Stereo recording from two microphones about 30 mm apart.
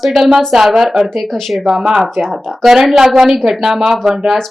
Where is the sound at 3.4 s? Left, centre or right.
Centre.